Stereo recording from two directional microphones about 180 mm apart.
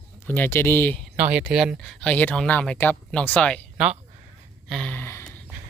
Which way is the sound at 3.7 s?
5° right (ahead or behind).